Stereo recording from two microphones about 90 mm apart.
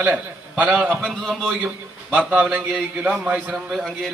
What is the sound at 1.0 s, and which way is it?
Speech, 5° left (ahead or behind).